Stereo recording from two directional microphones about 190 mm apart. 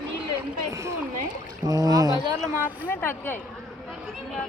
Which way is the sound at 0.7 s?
15° right (ahead or behind).